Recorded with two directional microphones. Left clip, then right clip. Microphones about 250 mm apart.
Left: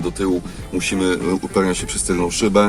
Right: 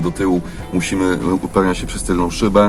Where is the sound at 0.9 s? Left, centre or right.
Centre.